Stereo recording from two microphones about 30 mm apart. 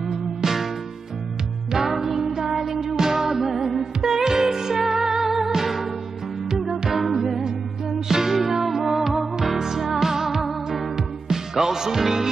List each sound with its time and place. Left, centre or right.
0.4 s music: centre
1.7 s music: centre
4.0 s music: centre
4.8 s music: centre
6.9 s music: centre